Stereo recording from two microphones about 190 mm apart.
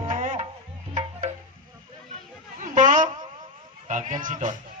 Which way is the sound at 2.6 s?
40° right (ahead or behind).